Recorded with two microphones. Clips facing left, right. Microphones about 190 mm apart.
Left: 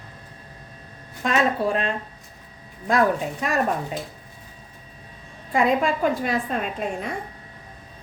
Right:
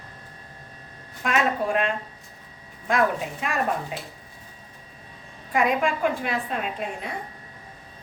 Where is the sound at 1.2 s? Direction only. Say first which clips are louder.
Left 2 dB; 35° left (ahead or behind).